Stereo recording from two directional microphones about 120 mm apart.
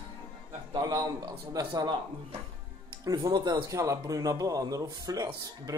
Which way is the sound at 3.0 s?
30° right (ahead or behind).